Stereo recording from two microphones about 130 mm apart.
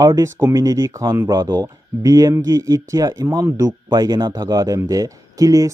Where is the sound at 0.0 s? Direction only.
25° right (ahead or behind).